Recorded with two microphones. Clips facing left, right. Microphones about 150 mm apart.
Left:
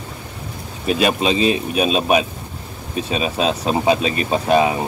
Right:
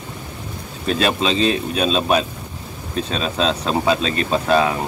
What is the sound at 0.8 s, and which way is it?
Speech, 15° left (ahead or behind).